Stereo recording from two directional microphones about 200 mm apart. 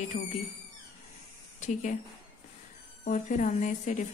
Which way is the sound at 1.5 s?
35° left (ahead or behind).